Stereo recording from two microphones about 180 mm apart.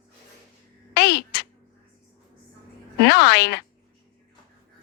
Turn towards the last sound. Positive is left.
turn(degrees=65)  # may be behind; listen again after turning